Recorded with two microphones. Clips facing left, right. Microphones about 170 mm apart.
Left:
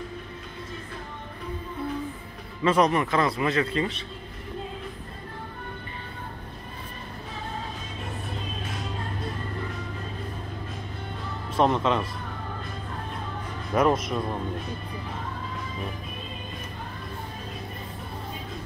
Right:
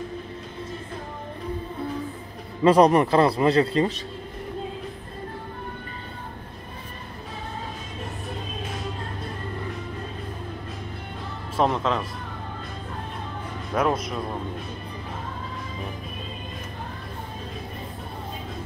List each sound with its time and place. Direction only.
2.6 s speech: 35° right (ahead or behind)
11.5 s speech: centre (ahead or behind)
13.7 s speech: centre (ahead or behind)